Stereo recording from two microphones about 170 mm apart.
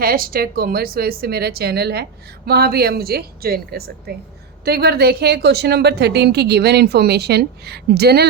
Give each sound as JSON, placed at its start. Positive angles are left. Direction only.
{"t": 0.0, "sound": "a woman's voice", "side_deg": -60}